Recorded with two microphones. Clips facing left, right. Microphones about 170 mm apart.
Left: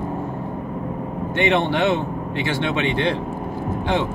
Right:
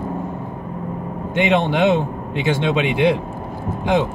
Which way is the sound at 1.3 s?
15° right (ahead or behind).